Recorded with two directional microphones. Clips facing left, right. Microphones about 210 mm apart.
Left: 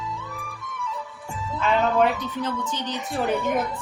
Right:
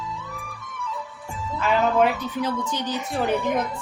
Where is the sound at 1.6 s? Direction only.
Centre (ahead or behind).